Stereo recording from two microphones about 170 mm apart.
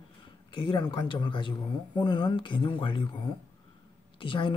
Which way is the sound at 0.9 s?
30° left (ahead or behind).